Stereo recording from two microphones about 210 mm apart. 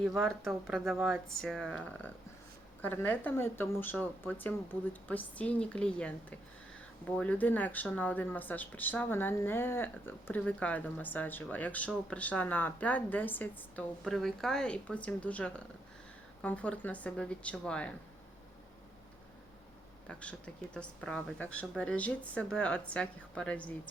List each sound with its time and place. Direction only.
0.0 s speech: centre (ahead or behind)
20.1 s speech: 5° left (ahead or behind)